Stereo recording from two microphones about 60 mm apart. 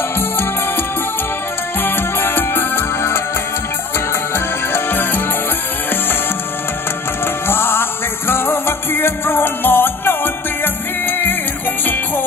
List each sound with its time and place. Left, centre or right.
1.8 s music: left
4.7 s music: left
7.4 s music: left